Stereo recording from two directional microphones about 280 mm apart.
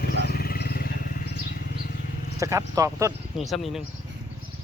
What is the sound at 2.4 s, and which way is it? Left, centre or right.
Speech, centre.